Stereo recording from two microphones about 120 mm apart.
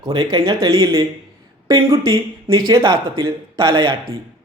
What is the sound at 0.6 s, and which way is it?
Speech, 30° right (ahead or behind).